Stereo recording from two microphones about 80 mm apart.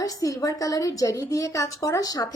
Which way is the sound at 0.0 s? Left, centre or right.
Left.